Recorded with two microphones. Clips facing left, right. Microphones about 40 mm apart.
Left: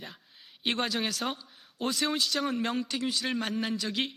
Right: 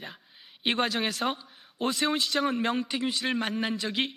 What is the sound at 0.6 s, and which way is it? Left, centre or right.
A man's voice, centre.